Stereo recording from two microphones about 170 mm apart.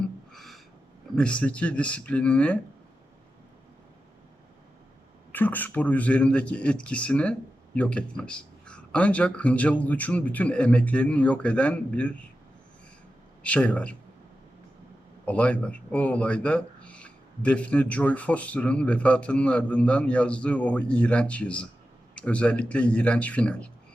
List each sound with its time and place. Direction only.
0.3 s a sound: centre (ahead or behind)
1.1 s speech: 5° left (ahead or behind)
5.3 s speech: 10° left (ahead or behind)
13.4 s speech: 10° left (ahead or behind)
15.3 s speech: 10° left (ahead or behind)